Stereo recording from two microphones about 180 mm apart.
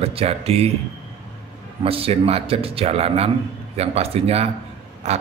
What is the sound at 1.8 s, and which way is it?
A man's voice, 30° right (ahead or behind).